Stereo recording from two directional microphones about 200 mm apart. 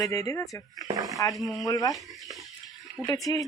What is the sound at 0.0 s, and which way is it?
Speech, 15° left (ahead or behind).